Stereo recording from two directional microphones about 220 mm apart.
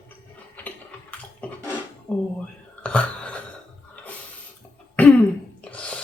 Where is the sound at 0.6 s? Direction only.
5° left (ahead or behind).